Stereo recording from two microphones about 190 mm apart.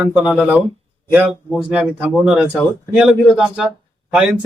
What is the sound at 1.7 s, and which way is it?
Speech, 5° right (ahead or behind).